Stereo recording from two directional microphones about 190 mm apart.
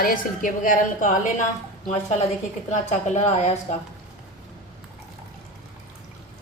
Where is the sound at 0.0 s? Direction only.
50° left (ahead or behind).